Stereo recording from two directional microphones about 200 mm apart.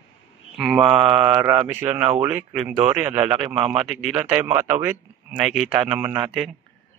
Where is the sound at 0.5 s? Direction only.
5° right (ahead or behind).